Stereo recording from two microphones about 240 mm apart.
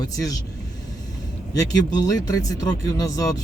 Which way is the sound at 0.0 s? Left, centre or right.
Centre.